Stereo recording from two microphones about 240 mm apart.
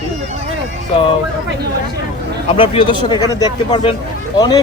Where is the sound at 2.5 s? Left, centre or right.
Left.